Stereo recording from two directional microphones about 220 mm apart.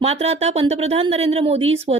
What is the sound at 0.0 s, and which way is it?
Speech, 25° right (ahead or behind).